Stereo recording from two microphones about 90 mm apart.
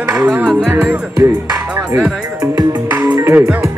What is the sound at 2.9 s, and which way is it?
Music, 25° right (ahead or behind).